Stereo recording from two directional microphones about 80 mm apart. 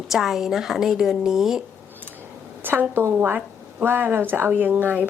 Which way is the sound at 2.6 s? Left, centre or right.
Right.